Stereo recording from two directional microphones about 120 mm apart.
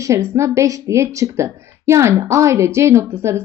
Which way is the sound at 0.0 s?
25° right (ahead or behind).